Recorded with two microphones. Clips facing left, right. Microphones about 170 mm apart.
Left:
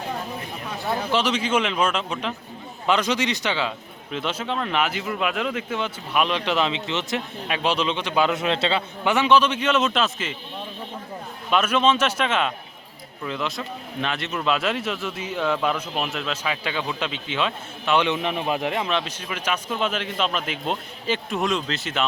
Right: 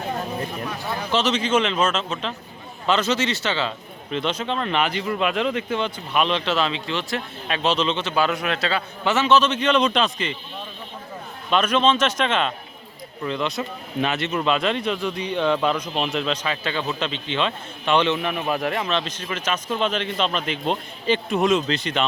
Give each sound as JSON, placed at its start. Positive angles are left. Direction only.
{"t": 1.1, "sound": "speech", "side_deg": 10}
{"t": 9.0, "sound": "speech", "side_deg": 15}
{"t": 11.5, "sound": "speech", "side_deg": 5}